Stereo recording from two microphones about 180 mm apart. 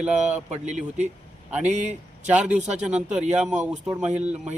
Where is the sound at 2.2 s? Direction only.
5° right (ahead or behind).